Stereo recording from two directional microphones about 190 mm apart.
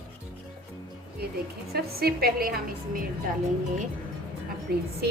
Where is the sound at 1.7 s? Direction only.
55° right (ahead or behind).